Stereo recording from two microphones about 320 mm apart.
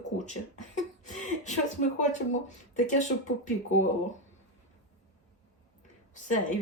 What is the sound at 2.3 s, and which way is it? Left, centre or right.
Speech, left.